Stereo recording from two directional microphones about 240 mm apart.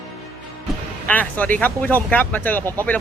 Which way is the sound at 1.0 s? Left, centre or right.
Centre.